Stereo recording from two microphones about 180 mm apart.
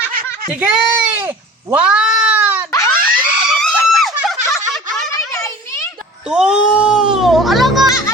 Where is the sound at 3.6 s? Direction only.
Centre (ahead or behind).